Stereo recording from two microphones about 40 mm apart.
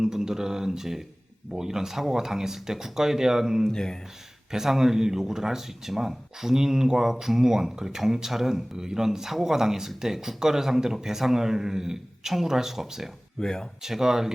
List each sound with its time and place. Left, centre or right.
0.0 s speech: centre
3.7 s speech: centre
4.5 s speech: centre
13.4 s speech: centre
13.8 s speech: centre